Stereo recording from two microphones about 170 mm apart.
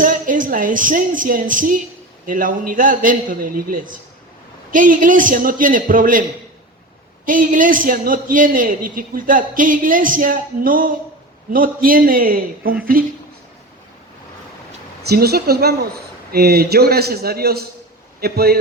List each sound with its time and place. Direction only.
0.0 s a man's voice: 50° right (ahead or behind)
7.3 s a man's voice: 50° right (ahead or behind)
15.0 s a man's voice: 65° right (ahead or behind)